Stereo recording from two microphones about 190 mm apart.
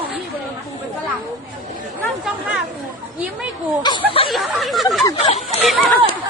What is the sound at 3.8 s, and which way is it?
Speech, 25° left (ahead or behind).